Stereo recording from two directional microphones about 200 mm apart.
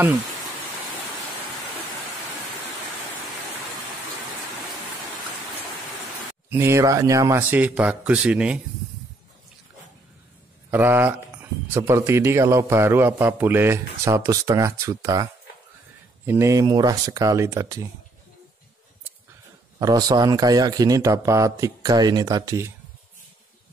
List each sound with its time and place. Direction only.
6.5 s a man's voice: 15° right (ahead or behind)
10.7 s a man's voice: 10° right (ahead or behind)
16.3 s a man's voice: 15° right (ahead or behind)
19.8 s speech: 20° right (ahead or behind)